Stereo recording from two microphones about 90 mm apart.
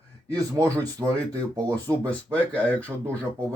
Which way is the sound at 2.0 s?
15° left (ahead or behind).